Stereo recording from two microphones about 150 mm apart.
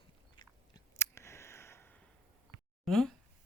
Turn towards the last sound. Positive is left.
turn(degrees=0)  # may be behind; listen again after turning